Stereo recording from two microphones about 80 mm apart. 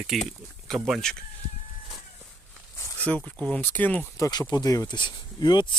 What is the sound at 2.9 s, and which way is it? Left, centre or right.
Speech, centre.